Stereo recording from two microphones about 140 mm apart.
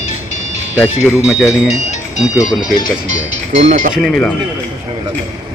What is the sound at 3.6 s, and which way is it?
Speech, 50° right (ahead or behind).